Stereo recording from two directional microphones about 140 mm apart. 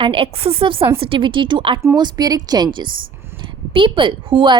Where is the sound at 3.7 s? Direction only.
40° right (ahead or behind).